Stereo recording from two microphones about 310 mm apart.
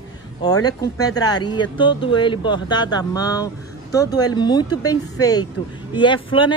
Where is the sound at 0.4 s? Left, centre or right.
Centre.